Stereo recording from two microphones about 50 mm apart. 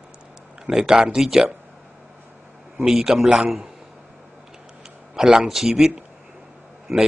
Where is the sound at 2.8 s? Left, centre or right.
Centre.